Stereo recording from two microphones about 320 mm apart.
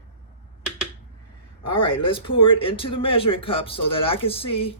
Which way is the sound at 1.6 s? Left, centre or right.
Centre.